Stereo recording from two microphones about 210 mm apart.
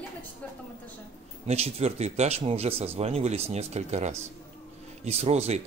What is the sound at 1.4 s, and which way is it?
Speech, 30° right (ahead or behind).